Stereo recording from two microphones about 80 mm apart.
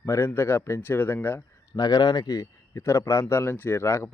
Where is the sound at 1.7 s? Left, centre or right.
Left.